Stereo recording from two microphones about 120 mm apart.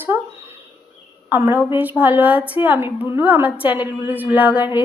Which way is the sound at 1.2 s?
20° right (ahead or behind).